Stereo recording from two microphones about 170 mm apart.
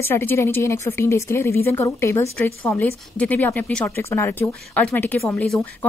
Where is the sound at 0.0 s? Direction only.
15° left (ahead or behind).